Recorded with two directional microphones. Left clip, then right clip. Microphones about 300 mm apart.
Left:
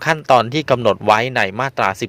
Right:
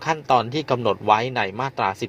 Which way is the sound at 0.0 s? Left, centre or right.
Left.